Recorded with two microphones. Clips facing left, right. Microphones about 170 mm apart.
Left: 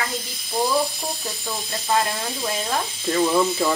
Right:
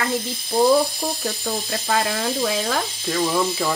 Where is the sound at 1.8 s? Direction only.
85° right.